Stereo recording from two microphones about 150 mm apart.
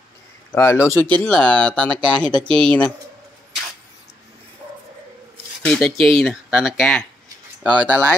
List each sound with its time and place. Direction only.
0.5 s speech: 15° left (ahead or behind)
5.6 s speech: 5° left (ahead or behind)